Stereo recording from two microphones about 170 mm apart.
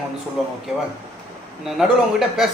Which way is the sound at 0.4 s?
Centre (ahead or behind).